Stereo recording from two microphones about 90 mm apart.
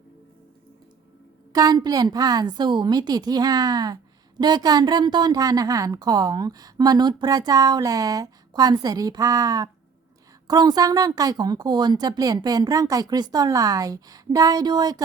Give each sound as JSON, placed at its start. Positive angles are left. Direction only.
{"t": 1.5, "sound": "a woman's voice", "side_deg": -45}